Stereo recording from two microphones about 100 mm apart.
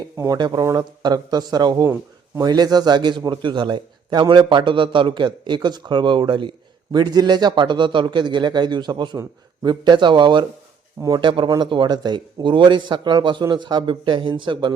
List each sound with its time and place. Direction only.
0.3 s a man's voice: 45° right (ahead or behind)
0.6 s speech: 35° right (ahead or behind)
1.9 s speech: 30° right (ahead or behind)
2.5 s a man's voice: 45° right (ahead or behind)
6.9 s a man's voice: 45° right (ahead or behind)